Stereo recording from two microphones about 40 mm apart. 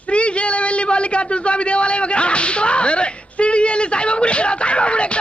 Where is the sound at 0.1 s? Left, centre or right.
Left.